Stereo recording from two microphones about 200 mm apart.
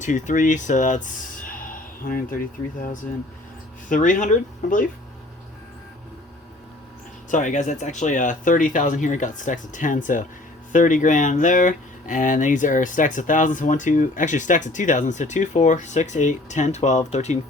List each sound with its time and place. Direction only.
0.0 s speech: 40° left (ahead or behind)
7.3 s speech: 40° left (ahead or behind)